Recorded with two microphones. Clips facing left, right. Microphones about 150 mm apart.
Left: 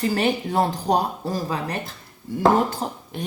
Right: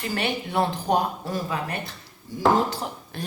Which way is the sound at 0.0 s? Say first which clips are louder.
Left 6 dB; 40° left (ahead or behind).